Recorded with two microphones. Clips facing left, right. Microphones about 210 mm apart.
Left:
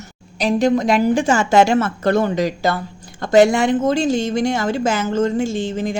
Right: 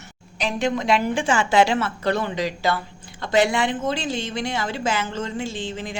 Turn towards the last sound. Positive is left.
turn(degrees=45)  # may be behind; listen again after turning